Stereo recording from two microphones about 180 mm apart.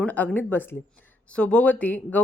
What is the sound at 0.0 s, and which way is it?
A woman's voice, 5° left (ahead or behind).